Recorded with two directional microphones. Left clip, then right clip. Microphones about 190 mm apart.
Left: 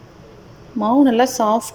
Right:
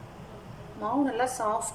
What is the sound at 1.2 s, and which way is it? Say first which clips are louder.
Speech: left 12 dB; 40° left (ahead or behind).